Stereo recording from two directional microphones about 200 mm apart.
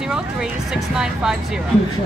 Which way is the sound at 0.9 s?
5° right (ahead or behind).